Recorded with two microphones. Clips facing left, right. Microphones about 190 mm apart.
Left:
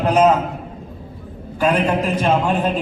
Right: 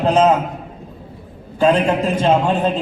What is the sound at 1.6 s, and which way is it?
Speech, 25° right (ahead or behind).